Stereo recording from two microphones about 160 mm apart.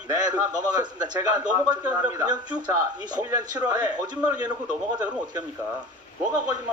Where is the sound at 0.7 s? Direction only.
25° right (ahead or behind).